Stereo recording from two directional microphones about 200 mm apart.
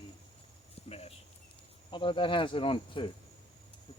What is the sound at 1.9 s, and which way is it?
Cricket, 25° left (ahead or behind).